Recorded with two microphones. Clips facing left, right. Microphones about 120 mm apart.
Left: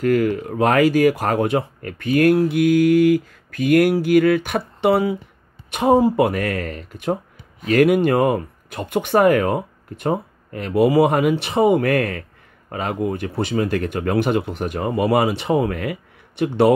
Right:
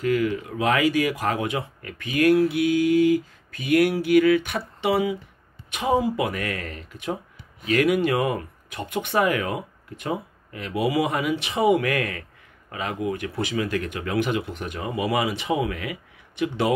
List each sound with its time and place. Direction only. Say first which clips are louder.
0.0 s speech: left 5 dB; 50° left (ahead or behind)